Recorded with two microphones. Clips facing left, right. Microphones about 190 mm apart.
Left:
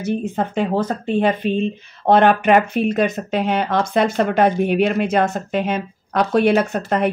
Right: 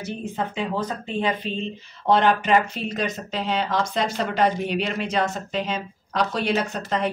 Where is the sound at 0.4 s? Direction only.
55° left (ahead or behind).